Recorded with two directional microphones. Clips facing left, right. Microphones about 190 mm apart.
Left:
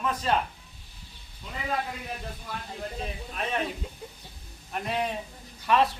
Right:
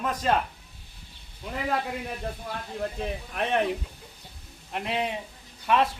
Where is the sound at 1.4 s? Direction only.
60° right (ahead or behind).